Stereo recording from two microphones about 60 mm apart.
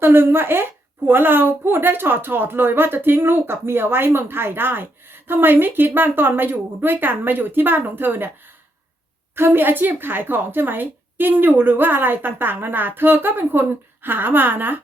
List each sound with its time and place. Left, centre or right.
0.0 s a woman's voice: right
9.3 s a woman's voice: right